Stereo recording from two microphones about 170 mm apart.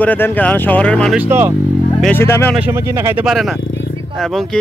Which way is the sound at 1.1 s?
10° right (ahead or behind).